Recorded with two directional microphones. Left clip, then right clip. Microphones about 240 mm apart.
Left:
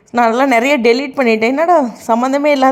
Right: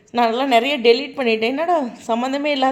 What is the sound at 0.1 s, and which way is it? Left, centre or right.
A woman's voice, left.